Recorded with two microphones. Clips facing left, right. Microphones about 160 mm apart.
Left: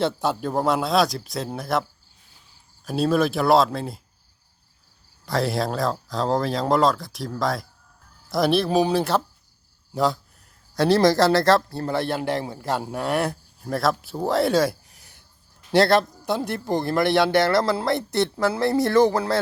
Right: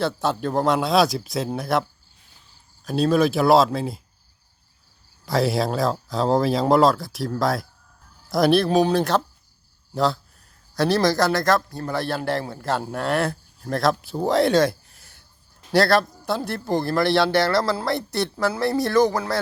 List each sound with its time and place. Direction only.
0.0 s speech: 10° left (ahead or behind)
2.8 s speech: 5° left (ahead or behind)
5.2 s speech: 5° right (ahead or behind)
10.8 s a man's voice: 25° left (ahead or behind)